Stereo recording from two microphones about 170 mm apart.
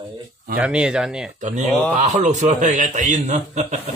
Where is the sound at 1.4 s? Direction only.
45° right (ahead or behind).